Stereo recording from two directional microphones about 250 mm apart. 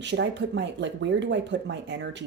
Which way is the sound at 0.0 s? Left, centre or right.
Right.